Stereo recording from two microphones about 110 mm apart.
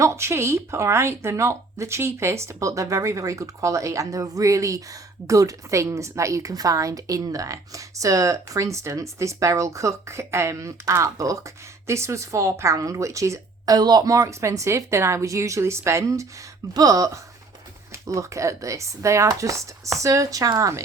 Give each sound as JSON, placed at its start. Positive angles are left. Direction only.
{"t": 0.0, "sound": "speech", "side_deg": -25}